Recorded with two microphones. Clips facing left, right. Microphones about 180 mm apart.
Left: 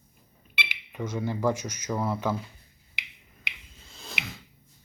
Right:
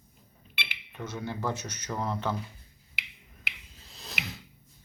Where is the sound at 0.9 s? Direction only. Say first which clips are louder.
Left 5 dB; 10° left (ahead or behind).